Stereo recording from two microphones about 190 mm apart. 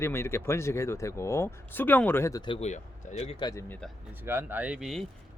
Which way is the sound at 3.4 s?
20° left (ahead or behind).